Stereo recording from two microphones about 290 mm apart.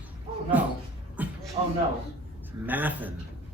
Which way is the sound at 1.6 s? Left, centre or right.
Centre.